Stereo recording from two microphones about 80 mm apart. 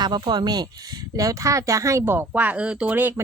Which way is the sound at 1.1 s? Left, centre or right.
Right.